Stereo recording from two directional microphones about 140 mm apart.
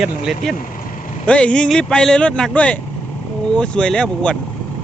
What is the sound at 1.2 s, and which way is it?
Speech, 10° left (ahead or behind).